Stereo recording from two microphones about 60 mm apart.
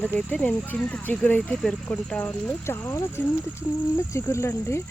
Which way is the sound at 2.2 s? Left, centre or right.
Left.